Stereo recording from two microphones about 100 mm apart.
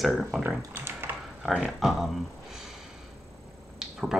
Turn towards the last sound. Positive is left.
turn(degrees=-5)  # may be behind; listen again after turning